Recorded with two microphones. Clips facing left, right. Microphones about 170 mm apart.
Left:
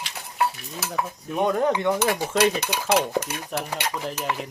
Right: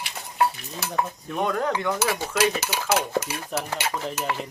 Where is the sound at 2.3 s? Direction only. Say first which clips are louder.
Left 2 dB; 5° right (ahead or behind).